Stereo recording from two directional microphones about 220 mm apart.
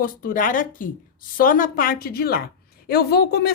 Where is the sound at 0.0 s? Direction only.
40° left (ahead or behind).